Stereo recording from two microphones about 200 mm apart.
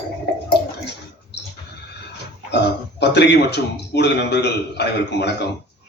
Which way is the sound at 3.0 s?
60° left (ahead or behind).